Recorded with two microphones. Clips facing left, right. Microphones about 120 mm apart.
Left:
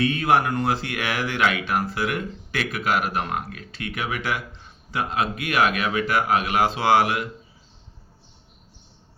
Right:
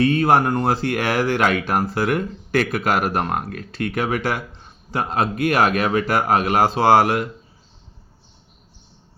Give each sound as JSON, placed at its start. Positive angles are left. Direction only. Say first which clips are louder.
{"t": 0.0, "sound": "speech", "louder": "right 4 dB", "side_deg": -35}